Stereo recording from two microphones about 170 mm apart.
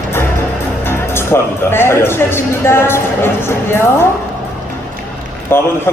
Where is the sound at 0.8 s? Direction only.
15° left (ahead or behind).